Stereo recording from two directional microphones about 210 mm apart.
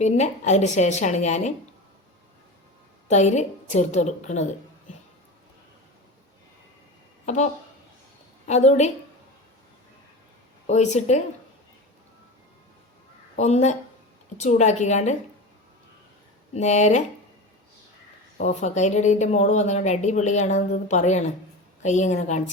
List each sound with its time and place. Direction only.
0.0 s speech: 35° left (ahead or behind)
3.1 s speech: 35° left (ahead or behind)
8.4 s speech: 35° left (ahead or behind)
10.7 s speech: 35° left (ahead or behind)
13.3 s speech: 30° left (ahead or behind)
16.6 s speech: 35° left (ahead or behind)
18.3 s speech: 35° left (ahead or behind)